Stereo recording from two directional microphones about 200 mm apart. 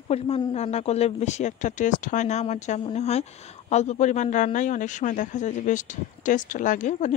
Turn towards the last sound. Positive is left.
turn(degrees=40)  # may be behind; listen again after turning